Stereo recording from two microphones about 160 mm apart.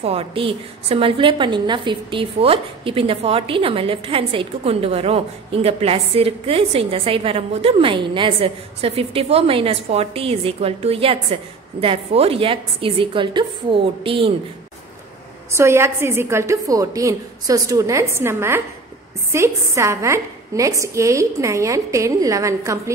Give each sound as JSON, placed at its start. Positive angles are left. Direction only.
{"t": 0.0, "sound": "a woman's voice", "side_deg": -35}
{"t": 15.5, "sound": "a woman's voice", "side_deg": -15}